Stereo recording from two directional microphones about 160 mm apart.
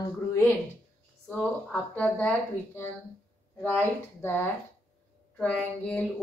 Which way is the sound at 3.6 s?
10° left (ahead or behind).